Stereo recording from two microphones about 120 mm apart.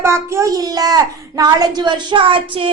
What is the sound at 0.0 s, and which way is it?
Speech, 25° right (ahead or behind).